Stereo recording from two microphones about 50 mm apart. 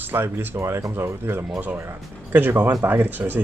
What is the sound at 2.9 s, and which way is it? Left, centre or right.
Speech, right.